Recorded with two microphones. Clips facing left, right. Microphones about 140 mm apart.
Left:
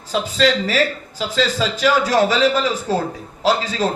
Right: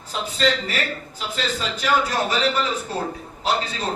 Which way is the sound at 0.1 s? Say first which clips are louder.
Left 5 dB; 90° left.